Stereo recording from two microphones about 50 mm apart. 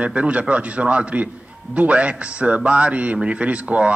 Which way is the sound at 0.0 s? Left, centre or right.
Right.